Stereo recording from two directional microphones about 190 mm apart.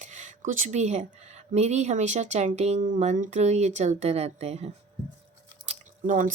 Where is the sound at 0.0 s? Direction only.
40° right (ahead or behind).